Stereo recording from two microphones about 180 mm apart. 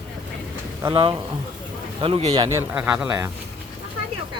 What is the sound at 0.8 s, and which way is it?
Speech, 25° right (ahead or behind).